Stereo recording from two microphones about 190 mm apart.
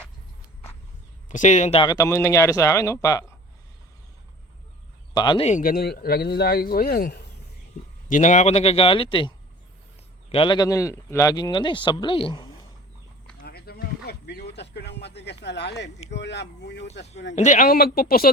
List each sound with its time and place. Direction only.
1.3 s speech: 40° left (ahead or behind)
1.8 s speech: 20° left (ahead or behind)
5.1 s speech: 25° left (ahead or behind)
5.5 s speech: 45° left (ahead or behind)
8.1 s speech: 40° left (ahead or behind)
10.3 s speech: 25° left (ahead or behind)
13.4 s a sound: 55° left (ahead or behind)
15.4 s speech: 65° left (ahead or behind)
17.3 s speech: 40° left (ahead or behind)